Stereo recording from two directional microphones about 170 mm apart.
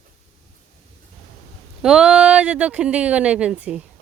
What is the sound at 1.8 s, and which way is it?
Speech, 5° right (ahead or behind).